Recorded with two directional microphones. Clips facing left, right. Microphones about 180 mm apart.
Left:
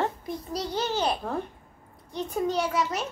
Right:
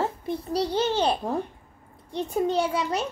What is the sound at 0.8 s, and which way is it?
A child's voice, 30° right (ahead or behind).